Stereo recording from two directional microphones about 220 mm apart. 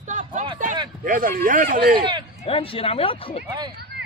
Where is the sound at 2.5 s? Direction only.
25° left (ahead or behind).